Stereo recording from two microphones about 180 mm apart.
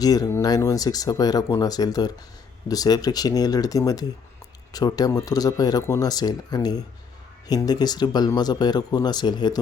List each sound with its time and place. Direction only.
0.0 s speech: 20° left (ahead or behind)